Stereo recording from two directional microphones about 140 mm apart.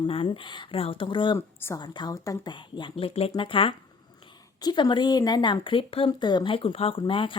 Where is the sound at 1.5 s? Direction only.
15° left (ahead or behind).